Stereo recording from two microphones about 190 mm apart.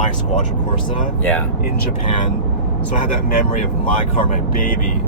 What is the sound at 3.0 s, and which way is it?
Speech, 45° left (ahead or behind).